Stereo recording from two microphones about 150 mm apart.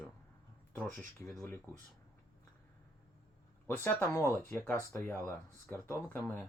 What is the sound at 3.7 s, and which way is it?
Speech, 15° left (ahead or behind).